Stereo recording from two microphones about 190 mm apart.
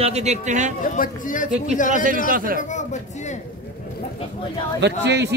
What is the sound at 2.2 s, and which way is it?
Speech, 50° right (ahead or behind).